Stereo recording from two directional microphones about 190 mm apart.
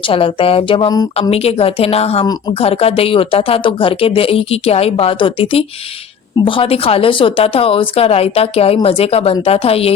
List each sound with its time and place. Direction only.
0.0 s a woman's voice: 30° left (ahead or behind)